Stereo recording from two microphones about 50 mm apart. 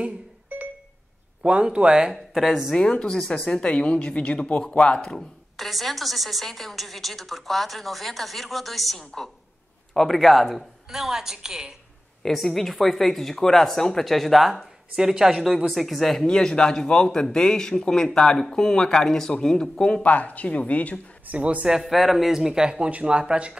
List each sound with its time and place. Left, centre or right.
0.0 s a sound: right
1.4 s speech: right
2.1 s speech: centre
2.7 s speech: centre
5.6 s a woman's voice: centre
12.2 s a woman's voice: centre
15.0 s speech: centre
15.4 s a woman's voice: centre
16.3 s speech: centre
20.0 s speech: left
21.3 s speech: right
21.6 s speech: centre